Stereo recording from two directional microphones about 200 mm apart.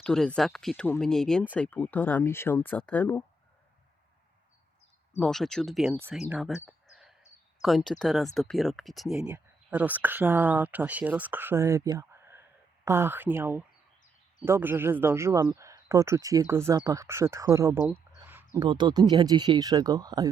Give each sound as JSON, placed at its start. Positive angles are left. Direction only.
{"t": 0.0, "sound": "speech", "side_deg": 5}
{"t": 5.1, "sound": "speech", "side_deg": 5}
{"t": 6.0, "sound": "speech", "side_deg": -10}
{"t": 6.7, "sound": "a sound", "side_deg": 0}
{"t": 7.6, "sound": "speech", "side_deg": 0}
{"t": 18.2, "sound": "a sound", "side_deg": -10}
{"t": 18.6, "sound": "speech", "side_deg": -25}